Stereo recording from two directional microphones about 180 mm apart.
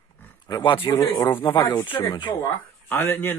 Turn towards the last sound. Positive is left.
turn(degrees=10)  # may be behind; listen again after turning